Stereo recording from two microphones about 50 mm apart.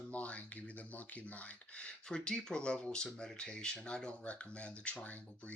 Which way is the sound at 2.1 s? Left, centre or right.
Centre.